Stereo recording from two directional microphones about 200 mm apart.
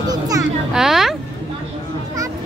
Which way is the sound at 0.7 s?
Centre (ahead or behind).